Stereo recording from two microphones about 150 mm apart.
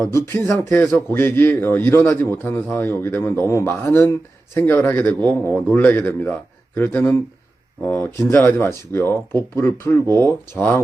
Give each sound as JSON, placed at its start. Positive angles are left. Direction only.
{"t": 0.1, "sound": "a man's voice", "side_deg": 15}